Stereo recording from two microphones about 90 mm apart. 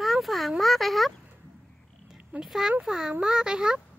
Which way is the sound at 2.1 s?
10° right (ahead or behind).